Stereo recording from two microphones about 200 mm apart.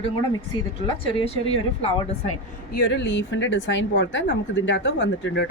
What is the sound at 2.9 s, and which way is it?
A woman's voice, 65° left (ahead or behind).